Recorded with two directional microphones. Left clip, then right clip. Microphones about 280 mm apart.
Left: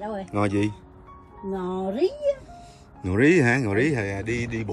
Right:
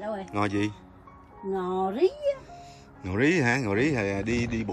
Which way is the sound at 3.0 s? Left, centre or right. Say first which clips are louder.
Left 5 dB; centre.